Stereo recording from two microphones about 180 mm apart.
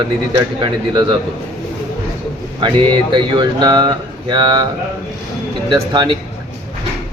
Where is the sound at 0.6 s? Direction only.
25° right (ahead or behind).